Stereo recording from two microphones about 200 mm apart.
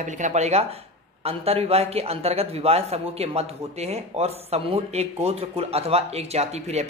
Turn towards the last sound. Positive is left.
turn(degrees=-30)  # may be behind; listen again after turning